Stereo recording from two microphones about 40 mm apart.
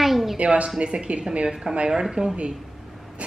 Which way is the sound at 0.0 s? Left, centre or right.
Centre.